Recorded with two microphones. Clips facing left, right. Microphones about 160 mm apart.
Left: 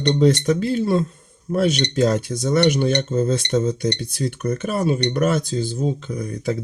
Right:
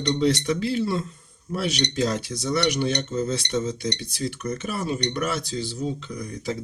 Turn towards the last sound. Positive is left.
turn(degrees=55)  # may be behind; listen again after turning